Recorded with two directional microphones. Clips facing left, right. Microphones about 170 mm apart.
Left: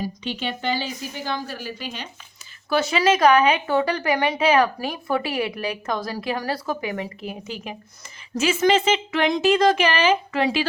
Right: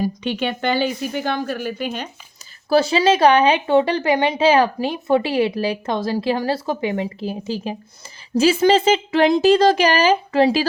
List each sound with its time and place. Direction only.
0.0 s a woman's voice: 60° right (ahead or behind)
2.6 s speech: 30° right (ahead or behind)